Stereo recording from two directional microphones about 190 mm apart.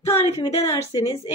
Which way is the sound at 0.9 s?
25° left (ahead or behind).